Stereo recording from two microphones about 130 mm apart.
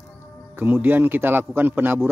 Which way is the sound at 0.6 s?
15° right (ahead or behind).